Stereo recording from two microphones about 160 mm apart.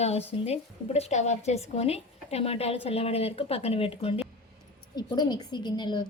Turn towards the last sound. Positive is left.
turn(degrees=30)  # may be behind; listen again after turning